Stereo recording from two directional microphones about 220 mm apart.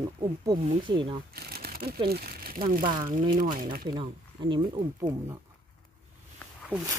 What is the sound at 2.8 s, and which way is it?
Speech, 20° right (ahead or behind).